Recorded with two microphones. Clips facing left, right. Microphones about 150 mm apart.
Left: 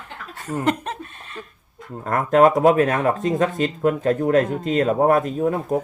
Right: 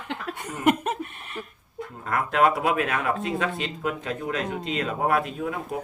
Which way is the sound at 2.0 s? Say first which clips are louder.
Left 7 dB; 45° left (ahead or behind).